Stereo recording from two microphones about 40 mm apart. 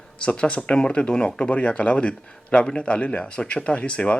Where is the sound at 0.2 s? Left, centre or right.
Left.